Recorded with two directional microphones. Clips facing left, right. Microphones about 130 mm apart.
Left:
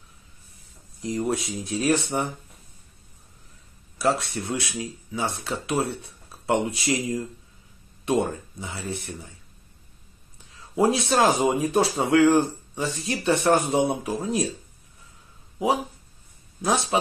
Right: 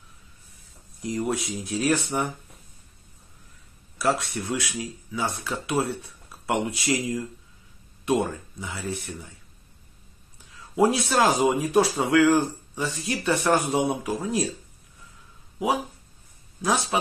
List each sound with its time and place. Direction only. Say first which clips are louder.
1.0 s speech: left 1 dB; 25° left (ahead or behind)
4.0 s speech: left 1 dB; 25° left (ahead or behind)
10.5 s speech: even; 30° left (ahead or behind)
16.6 s speech: left 1 dB; 30° left (ahead or behind)